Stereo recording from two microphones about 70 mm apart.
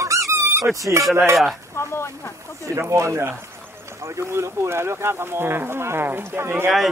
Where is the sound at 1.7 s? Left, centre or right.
Left.